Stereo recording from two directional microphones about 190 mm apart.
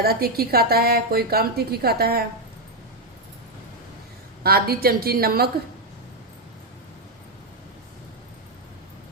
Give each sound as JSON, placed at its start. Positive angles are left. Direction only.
{"t": 0.0, "sound": "a woman's voice", "side_deg": -55}
{"t": 4.4, "sound": "a woman's voice", "side_deg": -55}